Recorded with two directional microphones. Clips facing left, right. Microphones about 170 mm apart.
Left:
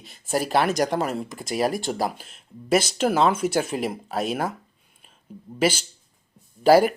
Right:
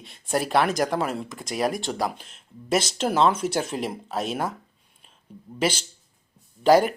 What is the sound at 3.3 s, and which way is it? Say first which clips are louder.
Speech: left 2 dB; 55° left (ahead or behind).